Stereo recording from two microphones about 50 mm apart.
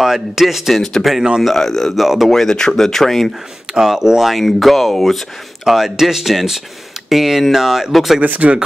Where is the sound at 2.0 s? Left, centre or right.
Centre.